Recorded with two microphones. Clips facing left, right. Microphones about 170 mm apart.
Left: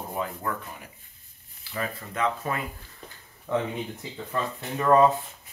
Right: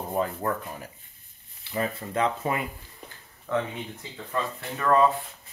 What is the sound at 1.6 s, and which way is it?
Speech, 25° right (ahead or behind).